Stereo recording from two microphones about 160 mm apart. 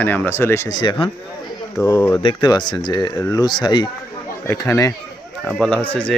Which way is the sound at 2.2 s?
30° left (ahead or behind).